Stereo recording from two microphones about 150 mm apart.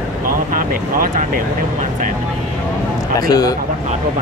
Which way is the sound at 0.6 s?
65° right (ahead or behind).